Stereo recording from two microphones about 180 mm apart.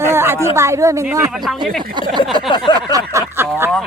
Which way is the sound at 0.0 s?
15° right (ahead or behind).